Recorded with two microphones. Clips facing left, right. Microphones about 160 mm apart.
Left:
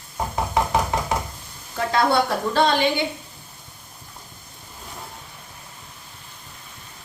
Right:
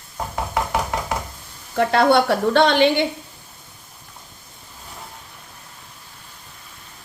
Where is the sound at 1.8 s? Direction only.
70° right (ahead or behind).